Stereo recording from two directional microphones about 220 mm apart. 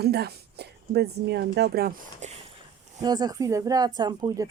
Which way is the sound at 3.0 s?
20° right (ahead or behind).